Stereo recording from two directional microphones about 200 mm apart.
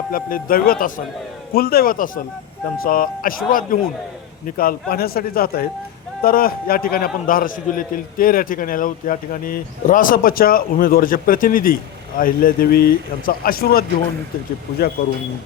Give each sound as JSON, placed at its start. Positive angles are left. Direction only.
{"t": 0.1, "sound": "a man's voice", "side_deg": 45}